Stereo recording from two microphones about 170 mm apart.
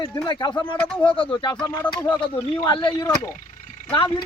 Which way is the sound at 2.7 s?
30° left (ahead or behind).